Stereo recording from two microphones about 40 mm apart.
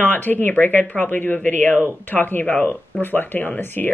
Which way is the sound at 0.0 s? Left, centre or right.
Left.